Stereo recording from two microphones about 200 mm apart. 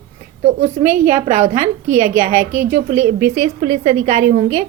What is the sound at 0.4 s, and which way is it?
A woman's voice, 35° right (ahead or behind).